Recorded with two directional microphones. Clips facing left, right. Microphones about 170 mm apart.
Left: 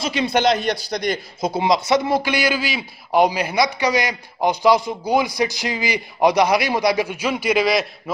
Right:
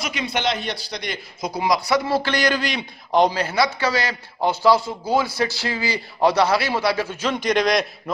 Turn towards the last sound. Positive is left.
turn(degrees=5)  # may be behind; listen again after turning